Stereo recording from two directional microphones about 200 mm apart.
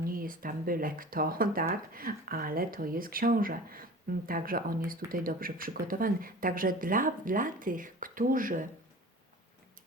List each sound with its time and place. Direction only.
0.0 s speech: 45° right (ahead or behind)